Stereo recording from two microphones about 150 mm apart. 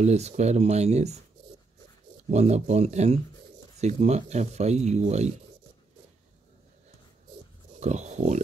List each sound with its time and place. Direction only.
0.0 s speech: 45° right (ahead or behind)
2.3 s speech: 45° right (ahead or behind)
7.8 s speech: 50° right (ahead or behind)